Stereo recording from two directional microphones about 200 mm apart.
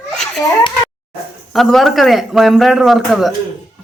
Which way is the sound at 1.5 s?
Centre (ahead or behind).